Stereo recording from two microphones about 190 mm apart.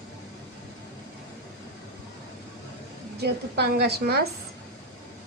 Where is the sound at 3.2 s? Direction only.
55° right (ahead or behind).